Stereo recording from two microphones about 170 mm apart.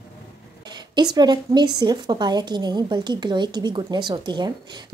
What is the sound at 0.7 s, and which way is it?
Speech, 25° right (ahead or behind).